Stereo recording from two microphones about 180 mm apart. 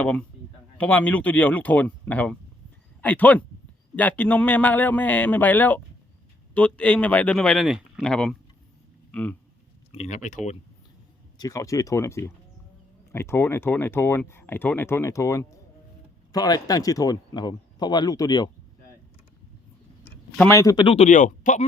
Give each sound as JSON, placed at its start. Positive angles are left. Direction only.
{"t": 0.0, "sound": "speech", "side_deg": 5}
{"t": 9.9, "sound": "speech", "side_deg": 35}
{"t": 11.3, "sound": "speech", "side_deg": 20}
{"t": 20.1, "sound": "a sound", "side_deg": 15}
{"t": 20.8, "sound": "speech", "side_deg": 35}